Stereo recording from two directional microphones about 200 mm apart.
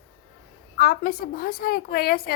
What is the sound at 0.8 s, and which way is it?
A woman's voice, 50° left (ahead or behind).